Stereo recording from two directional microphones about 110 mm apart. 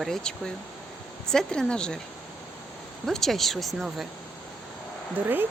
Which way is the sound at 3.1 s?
Centre (ahead or behind).